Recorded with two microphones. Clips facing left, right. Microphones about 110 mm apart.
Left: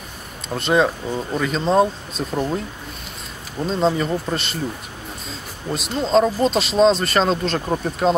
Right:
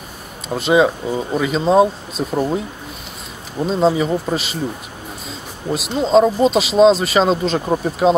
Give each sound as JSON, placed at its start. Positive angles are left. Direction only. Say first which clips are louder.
{"t": 0.6, "sound": "speech", "louder": "right 4 dB", "side_deg": -5}
{"t": 5.7, "sound": "speech", "louder": "right 4 dB", "side_deg": -5}